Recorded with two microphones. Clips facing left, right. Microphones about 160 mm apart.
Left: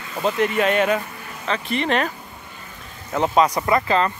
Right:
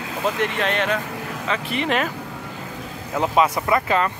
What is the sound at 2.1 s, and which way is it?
Vehicle, 90° right.